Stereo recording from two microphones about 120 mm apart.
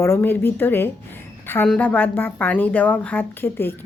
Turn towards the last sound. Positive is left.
turn(degrees=15)  # may be behind; listen again after turning